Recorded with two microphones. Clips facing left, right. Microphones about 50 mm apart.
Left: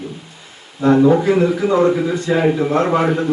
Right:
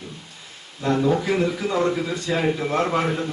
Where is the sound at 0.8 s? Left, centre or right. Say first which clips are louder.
Left 9 dB; left.